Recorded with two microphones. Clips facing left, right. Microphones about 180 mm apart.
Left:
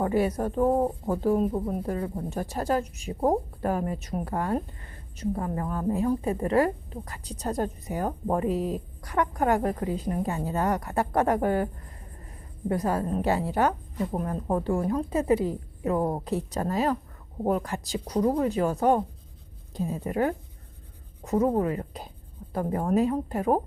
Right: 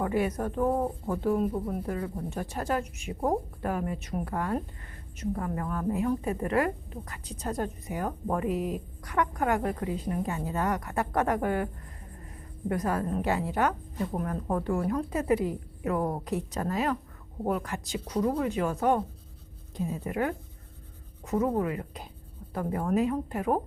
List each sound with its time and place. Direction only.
0.0 s a woman's voice: 35° left (ahead or behind)